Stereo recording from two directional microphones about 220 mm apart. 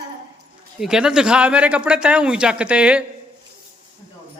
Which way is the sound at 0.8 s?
5° right (ahead or behind).